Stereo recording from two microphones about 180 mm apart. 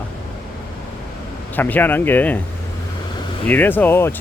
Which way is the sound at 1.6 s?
10° left (ahead or behind).